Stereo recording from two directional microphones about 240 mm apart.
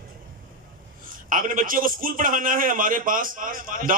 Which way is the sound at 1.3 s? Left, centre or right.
Right.